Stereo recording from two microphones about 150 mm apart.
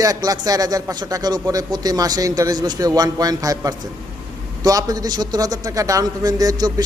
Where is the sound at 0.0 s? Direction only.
25° right (ahead or behind).